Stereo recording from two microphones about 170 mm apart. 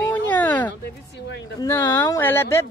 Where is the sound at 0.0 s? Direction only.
10° left (ahead or behind).